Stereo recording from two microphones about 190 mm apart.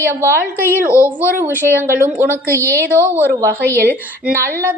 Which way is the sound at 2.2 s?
15° left (ahead or behind).